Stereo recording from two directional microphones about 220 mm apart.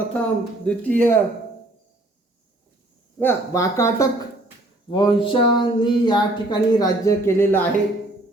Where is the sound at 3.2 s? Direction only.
10° left (ahead or behind).